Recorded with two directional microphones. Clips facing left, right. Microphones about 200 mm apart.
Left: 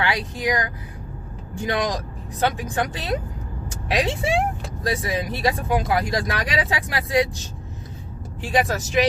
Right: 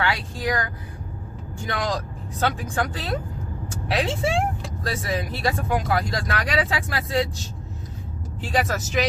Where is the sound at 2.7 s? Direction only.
20° left (ahead or behind).